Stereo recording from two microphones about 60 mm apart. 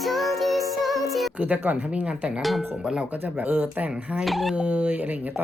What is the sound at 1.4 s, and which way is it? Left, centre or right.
Speech, right.